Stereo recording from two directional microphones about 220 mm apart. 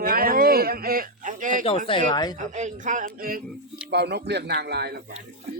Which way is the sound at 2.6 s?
35° right (ahead or behind).